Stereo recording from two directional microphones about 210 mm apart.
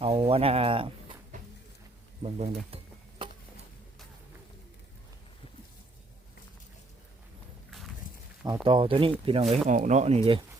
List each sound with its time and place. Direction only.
0.0 s speech: 25° right (ahead or behind)
2.2 s speech: 30° right (ahead or behind)
8.6 s speech: 25° right (ahead or behind)